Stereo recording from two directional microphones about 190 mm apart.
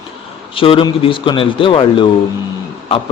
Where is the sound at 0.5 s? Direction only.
30° left (ahead or behind).